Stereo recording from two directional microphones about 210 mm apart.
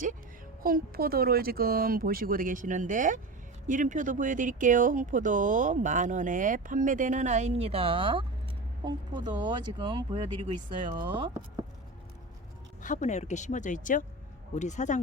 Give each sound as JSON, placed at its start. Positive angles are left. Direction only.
{"t": 0.6, "sound": "speech", "side_deg": -45}
{"t": 12.8, "sound": "speech", "side_deg": 35}